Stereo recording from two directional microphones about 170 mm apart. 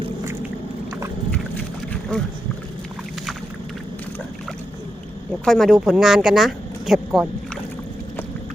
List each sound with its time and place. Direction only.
1.9 s boat: 5° left (ahead or behind)
5.5 s speech: centre (ahead or behind)